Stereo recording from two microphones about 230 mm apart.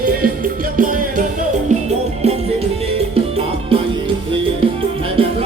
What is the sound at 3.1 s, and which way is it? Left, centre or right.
Music, right.